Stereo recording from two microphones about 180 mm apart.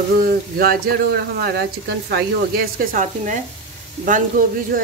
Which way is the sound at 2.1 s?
55° right (ahead or behind).